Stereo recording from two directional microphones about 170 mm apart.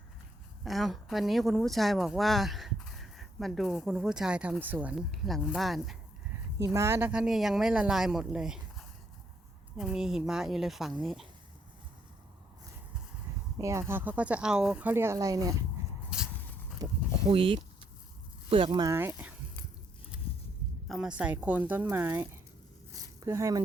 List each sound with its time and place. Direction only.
0.6 s speech: centre (ahead or behind)
6.7 s speech: 15° right (ahead or behind)
13.6 s speech: 15° right (ahead or behind)
16.0 s a sound: 5° right (ahead or behind)
16.8 s a sound: 20° right (ahead or behind)
17.2 s speech: 30° right (ahead or behind)
18.9 s speech: 15° right (ahead or behind)
20.8 s speech: centre (ahead or behind); by 23.6 s 20° right (ahead or behind)